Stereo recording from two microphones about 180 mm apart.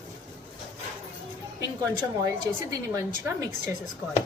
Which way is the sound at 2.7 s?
15° right (ahead or behind).